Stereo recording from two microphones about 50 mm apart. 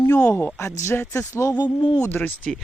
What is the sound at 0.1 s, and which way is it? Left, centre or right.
Speech, left.